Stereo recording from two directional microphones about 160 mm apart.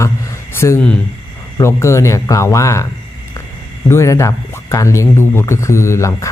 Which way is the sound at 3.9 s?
15° left (ahead or behind).